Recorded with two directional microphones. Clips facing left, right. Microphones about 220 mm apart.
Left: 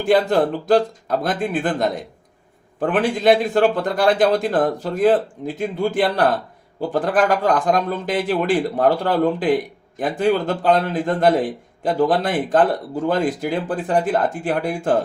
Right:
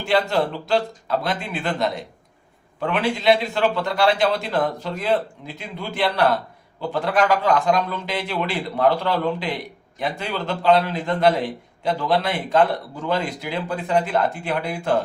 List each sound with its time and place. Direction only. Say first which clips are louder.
0.0 s a man's voice: left 4 dB; 50° left (ahead or behind)